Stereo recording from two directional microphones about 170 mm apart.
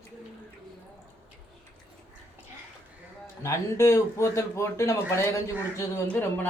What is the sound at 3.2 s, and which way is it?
A man's voice, 15° left (ahead or behind).